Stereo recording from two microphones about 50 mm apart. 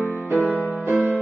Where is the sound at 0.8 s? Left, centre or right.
Right.